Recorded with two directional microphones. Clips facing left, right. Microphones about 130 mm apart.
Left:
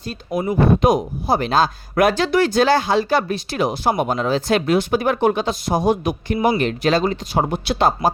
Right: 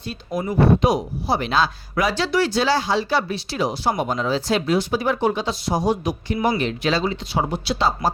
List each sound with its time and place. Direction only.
0.8 s speech: 50° left (ahead or behind)